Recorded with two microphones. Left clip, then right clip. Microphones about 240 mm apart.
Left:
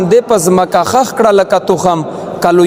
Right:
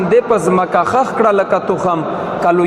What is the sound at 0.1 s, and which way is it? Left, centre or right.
A man's voice, left.